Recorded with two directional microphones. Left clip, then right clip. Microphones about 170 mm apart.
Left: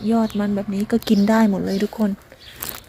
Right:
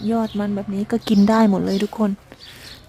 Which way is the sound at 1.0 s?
20° right (ahead or behind).